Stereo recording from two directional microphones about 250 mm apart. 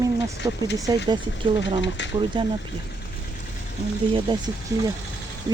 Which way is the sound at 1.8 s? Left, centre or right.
Left.